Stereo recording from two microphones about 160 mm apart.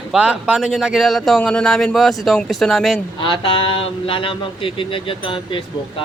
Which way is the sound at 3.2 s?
30° left (ahead or behind).